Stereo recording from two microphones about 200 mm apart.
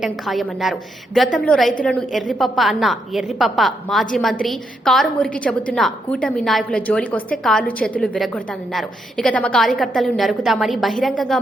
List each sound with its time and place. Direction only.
0.0 s a woman's voice: centre (ahead or behind)